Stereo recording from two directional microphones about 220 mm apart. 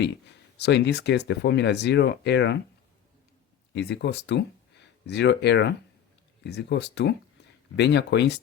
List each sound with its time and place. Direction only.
0.0 s speech: 50° left (ahead or behind)
3.7 s speech: 50° left (ahead or behind)